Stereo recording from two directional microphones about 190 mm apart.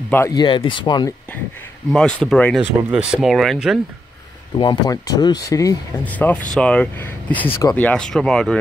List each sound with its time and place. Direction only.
0.1 s speech: 15° left (ahead or behind)
1.9 s speech: 5° left (ahead or behind)
4.6 s speech: 20° left (ahead or behind); by 8.5 s 5° left (ahead or behind)